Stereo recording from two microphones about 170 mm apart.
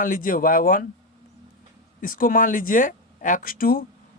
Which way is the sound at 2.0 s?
55° left (ahead or behind).